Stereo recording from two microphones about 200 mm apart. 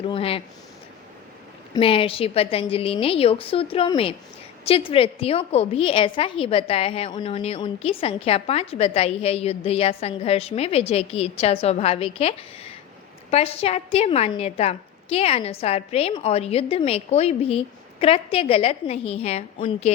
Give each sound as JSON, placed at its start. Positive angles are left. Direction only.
{"t": 0.1, "sound": "a woman's voice", "side_deg": 30}
{"t": 1.7, "sound": "a woman's voice", "side_deg": 25}